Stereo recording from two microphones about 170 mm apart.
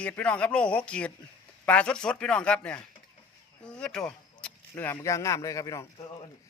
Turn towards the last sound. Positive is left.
turn(degrees=20)  # may be behind; listen again after turning